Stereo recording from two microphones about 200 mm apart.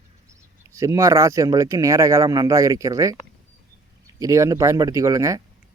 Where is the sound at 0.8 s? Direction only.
15° right (ahead or behind).